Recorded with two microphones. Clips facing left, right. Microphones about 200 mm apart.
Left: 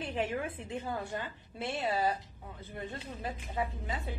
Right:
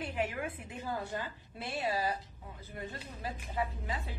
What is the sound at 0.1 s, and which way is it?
A woman's voice, 25° left (ahead or behind).